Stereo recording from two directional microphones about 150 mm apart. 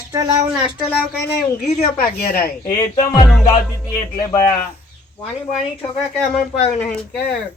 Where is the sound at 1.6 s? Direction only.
90° left.